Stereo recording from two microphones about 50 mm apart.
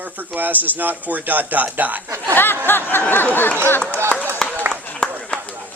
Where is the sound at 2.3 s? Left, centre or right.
Left.